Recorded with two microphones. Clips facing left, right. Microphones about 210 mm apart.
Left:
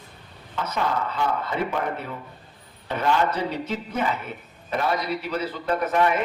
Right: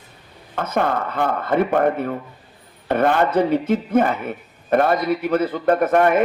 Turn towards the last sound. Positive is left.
turn(degrees=-50)  # may be behind; listen again after turning